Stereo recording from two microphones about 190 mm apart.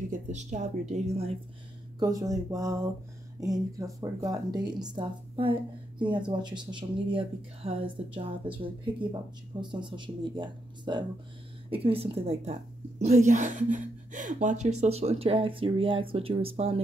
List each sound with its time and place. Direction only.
0.1 s a woman's voice: 40° right (ahead or behind)
2.0 s speech: 20° right (ahead or behind)